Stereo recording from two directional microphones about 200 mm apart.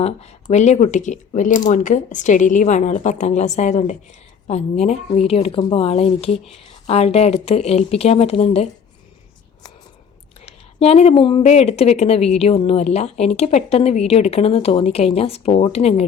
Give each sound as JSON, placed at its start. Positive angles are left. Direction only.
{"t": 0.0, "sound": "a woman's voice", "side_deg": 30}
{"t": 10.4, "sound": "a woman's voice", "side_deg": 30}